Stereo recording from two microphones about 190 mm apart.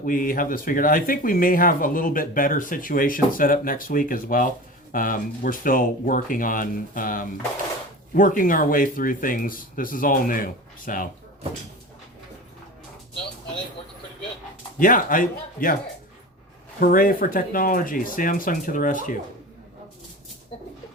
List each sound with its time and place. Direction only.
0.0 s speech: 45° left (ahead or behind)
14.8 s speech: 45° left (ahead or behind)
16.8 s speech: 50° left (ahead or behind)